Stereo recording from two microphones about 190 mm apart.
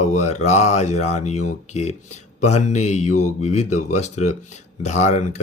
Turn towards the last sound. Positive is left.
turn(degrees=40)  # may be behind; listen again after turning